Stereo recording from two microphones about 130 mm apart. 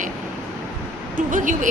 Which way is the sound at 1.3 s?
85° right.